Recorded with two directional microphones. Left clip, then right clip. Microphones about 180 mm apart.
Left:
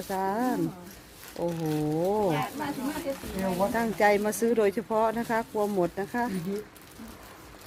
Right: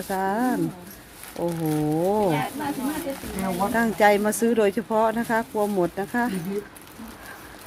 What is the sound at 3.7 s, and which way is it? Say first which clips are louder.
Speech: right 6 dB; 10° right (ahead or behind).